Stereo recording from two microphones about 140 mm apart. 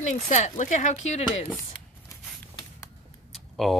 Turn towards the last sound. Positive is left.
turn(degrees=0)  # may be behind; listen again after turning